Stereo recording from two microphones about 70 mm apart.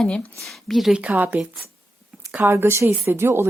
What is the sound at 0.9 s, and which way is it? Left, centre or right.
Speech, right.